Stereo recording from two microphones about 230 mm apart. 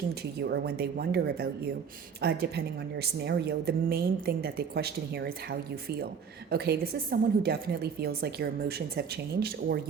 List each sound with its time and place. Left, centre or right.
0.1 s a woman's voice: right